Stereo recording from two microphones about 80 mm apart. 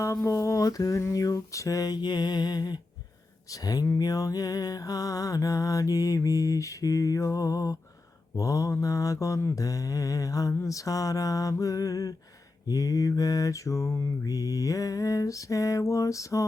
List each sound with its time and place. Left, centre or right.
0.3 s music: left
14.3 s music: left